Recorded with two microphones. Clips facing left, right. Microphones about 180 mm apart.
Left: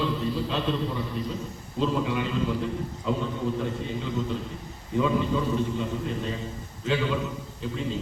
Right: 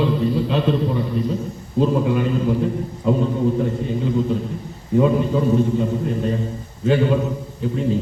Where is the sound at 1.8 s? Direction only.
50° right (ahead or behind).